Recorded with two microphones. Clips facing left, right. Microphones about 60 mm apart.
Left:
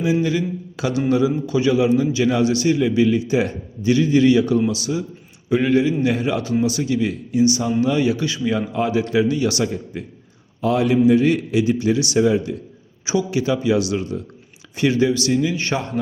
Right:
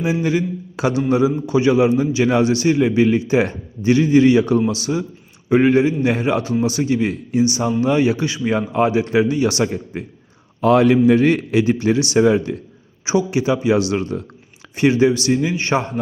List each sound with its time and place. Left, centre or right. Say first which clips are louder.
0.0 s a man's voice: even; right
10.6 s a man's voice: right 4 dB; right
13.1 s a man's voice: right 2 dB; right
13.9 s a man's voice: right 2 dB; right
14.8 s a man's voice: right 3 dB; right